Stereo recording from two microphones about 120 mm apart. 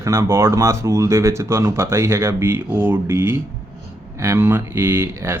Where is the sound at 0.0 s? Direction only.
25° right (ahead or behind).